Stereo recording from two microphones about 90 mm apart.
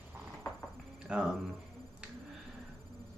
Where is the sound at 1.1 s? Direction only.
10° right (ahead or behind).